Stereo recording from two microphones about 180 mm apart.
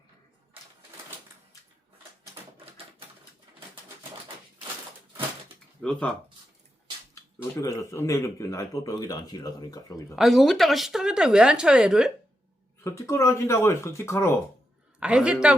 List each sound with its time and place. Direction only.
5.8 s speech: 5° left (ahead or behind)
7.6 s speech: 15° left (ahead or behind)
10.2 s speech: centre (ahead or behind)
12.8 s speech: 15° left (ahead or behind)
15.0 s speech: 5° right (ahead or behind)